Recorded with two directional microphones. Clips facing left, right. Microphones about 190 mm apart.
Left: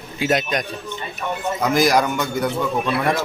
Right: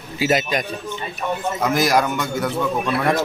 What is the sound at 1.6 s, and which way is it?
A man's voice, centre (ahead or behind).